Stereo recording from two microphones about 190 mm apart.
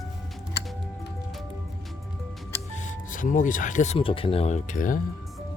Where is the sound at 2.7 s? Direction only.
40° left (ahead or behind).